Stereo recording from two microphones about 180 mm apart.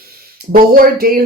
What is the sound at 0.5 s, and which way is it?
Speech, 55° right (ahead or behind).